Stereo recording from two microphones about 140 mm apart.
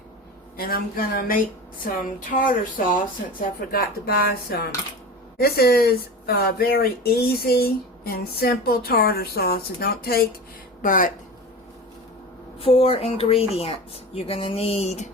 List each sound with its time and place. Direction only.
0.5 s speech: 90° left
1.8 s speech: 75° left (ahead or behind)
3.7 s speech: 90° left
10.8 s speech: 75° left (ahead or behind)
12.5 s speech: 45° left (ahead or behind)